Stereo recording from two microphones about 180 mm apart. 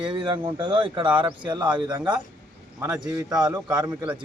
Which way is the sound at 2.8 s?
5° right (ahead or behind).